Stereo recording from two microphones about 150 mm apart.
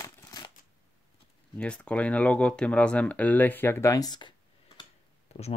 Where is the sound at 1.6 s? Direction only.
5° left (ahead or behind); by 4.3 s 30° left (ahead or behind).